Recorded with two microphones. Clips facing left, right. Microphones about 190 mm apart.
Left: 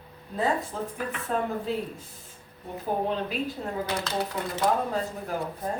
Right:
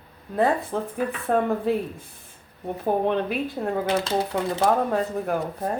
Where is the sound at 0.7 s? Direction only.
70° right (ahead or behind).